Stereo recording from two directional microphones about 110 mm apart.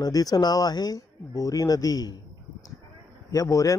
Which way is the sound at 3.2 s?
30° left (ahead or behind).